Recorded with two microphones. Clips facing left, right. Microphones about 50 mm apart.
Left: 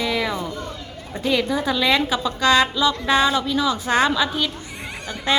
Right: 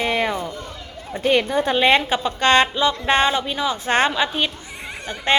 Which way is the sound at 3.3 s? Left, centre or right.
Right.